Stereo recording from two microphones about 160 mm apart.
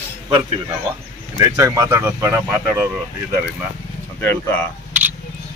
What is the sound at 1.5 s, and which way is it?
Speech, 20° right (ahead or behind).